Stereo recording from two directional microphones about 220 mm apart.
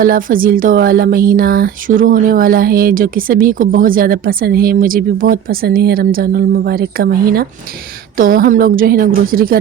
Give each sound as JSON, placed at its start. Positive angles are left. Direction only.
{"t": 0.0, "sound": "speech", "side_deg": -40}